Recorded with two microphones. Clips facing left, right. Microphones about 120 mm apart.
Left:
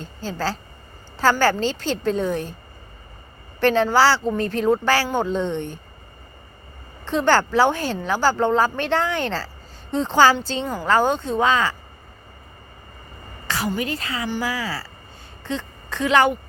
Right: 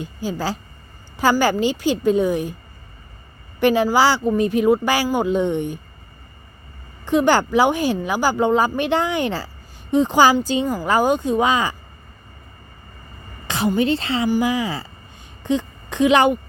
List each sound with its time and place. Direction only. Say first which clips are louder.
0.0 s speech: right 2 dB; 15° right (ahead or behind)
3.6 s speech: right 1 dB; 10° right (ahead or behind)
7.0 s speech: right 2 dB; 15° right (ahead or behind)
13.5 s a woman's voice: right 6 dB; 20° right (ahead or behind)
14.3 s a woman's voice: right 6 dB; 15° right (ahead or behind)